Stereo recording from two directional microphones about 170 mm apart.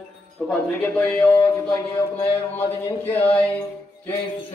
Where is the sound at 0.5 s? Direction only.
10° left (ahead or behind).